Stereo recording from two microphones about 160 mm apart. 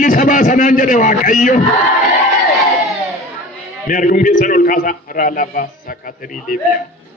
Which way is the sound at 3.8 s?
60° left (ahead or behind).